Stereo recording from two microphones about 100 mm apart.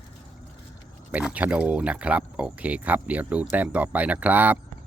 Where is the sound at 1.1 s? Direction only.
15° right (ahead or behind).